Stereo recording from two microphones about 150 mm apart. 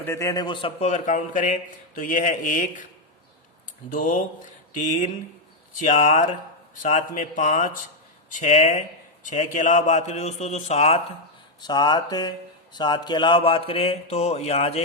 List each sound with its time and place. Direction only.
0.0 s a sound: 20° left (ahead or behind)
0.8 s speech: 50° left (ahead or behind)
3.8 s speech: 60° left (ahead or behind)
5.8 s a man's voice: 60° left (ahead or behind)
11.6 s a sound: 30° left (ahead or behind)
12.7 s speech: 30° left (ahead or behind)